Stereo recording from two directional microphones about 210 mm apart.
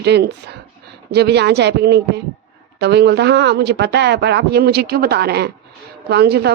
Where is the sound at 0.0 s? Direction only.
50° right (ahead or behind).